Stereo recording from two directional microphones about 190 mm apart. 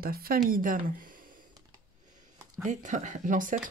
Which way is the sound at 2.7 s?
40° right (ahead or behind).